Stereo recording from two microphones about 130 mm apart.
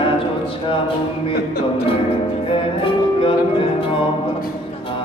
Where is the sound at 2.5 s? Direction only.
45° left (ahead or behind).